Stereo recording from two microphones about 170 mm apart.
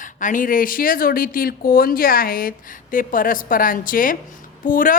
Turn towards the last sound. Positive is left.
turn(degrees=55)  # may be behind; listen again after turning